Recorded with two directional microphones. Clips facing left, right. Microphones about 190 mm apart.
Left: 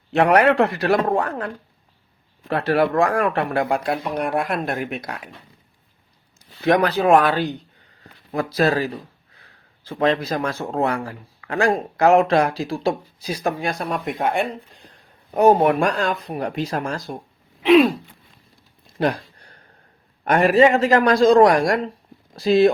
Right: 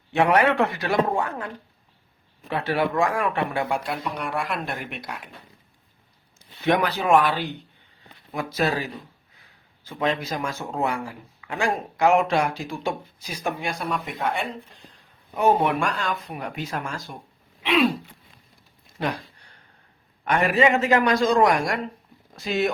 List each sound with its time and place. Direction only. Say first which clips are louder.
0.5 s speech: left 4 dB; 35° left (ahead or behind)
2.5 s speech: left 5 dB; 35° left (ahead or behind)
6.7 s speech: left 4 dB; 40° left (ahead or behind)
15.4 s speech: left 6 dB; 40° left (ahead or behind)
17.6 s throat clearing: left 9 dB; 40° left (ahead or behind)
20.2 s speech: left 6 dB; 40° left (ahead or behind)